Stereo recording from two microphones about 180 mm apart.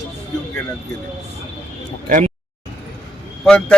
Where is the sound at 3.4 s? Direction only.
5° left (ahead or behind).